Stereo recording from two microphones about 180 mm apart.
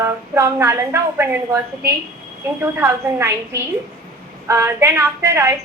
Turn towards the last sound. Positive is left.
turn(degrees=-15)  # may be behind; listen again after turning